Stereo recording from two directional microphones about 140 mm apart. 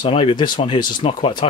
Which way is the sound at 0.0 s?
40° left (ahead or behind).